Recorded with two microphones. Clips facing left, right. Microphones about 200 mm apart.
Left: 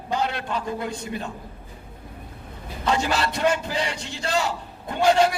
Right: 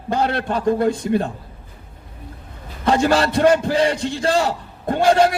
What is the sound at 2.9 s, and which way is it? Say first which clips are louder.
A man's voice: right 7 dB; 50° right (ahead or behind).